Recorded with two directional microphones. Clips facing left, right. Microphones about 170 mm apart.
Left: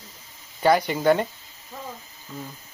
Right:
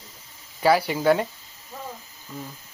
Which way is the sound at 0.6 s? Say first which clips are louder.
Even; 5° right (ahead or behind).